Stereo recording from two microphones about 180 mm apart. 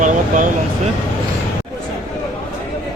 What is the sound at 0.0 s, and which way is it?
Speech, 45° right (ahead or behind).